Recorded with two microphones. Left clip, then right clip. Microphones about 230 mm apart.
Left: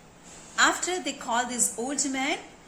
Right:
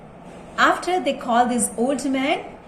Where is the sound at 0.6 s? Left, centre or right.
Left.